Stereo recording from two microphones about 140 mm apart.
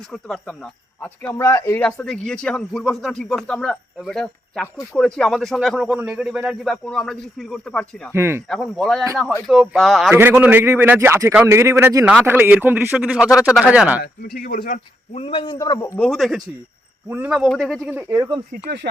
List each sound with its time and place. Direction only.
0.1 s speech: 5° left (ahead or behind)
1.4 s speech: 20° left (ahead or behind); by 8.1 s 5° left (ahead or behind)
8.1 s a man's voice: 15° right (ahead or behind)
8.4 s speech: centre (ahead or behind)
10.1 s a man's voice: 15° right (ahead or behind)
14.0 s speech: 90° left
15.1 s a man's voice: 40° left (ahead or behind)
15.5 s a man's voice: 25° left (ahead or behind)
16.0 s speech: 5° left (ahead or behind)
17.1 s a man's voice: 10° right (ahead or behind)
17.5 s speech: 5° left (ahead or behind)
18.1 s speech: 30° right (ahead or behind)